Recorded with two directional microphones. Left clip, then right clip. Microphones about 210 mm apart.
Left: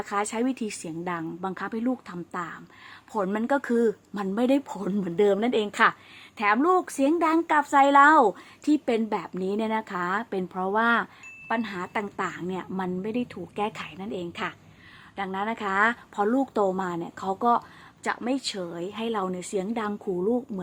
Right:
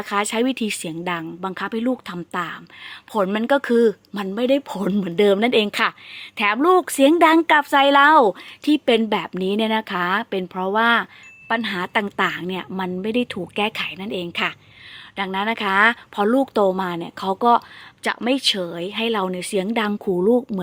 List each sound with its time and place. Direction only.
0.0 s speech: 20° right (ahead or behind)
4.7 s speech: 20° right (ahead or behind)
13.7 s a woman's voice: 20° right (ahead or behind)